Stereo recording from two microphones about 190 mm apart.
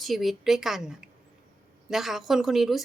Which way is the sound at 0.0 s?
Centre (ahead or behind).